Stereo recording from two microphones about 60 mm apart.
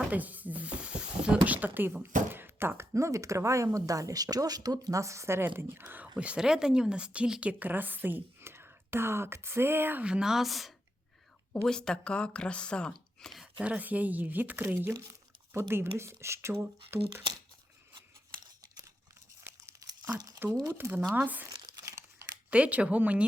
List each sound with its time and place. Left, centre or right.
0.1 s speech: right
2.3 s a sound: right
2.9 s speech: right
6.1 s a woman's voice: centre; by 10.0 s right
10.0 s speech: centre
11.6 s speech: centre
13.6 s speech: right
15.5 s a woman's voice: right
20.1 s speech: right
21.2 s speech: right
22.4 s speech: right